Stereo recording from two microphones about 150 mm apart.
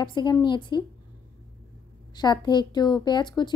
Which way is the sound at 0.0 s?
30° left (ahead or behind).